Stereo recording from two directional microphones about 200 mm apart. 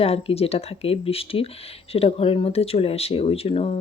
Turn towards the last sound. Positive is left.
turn(degrees=30)  # may be behind; listen again after turning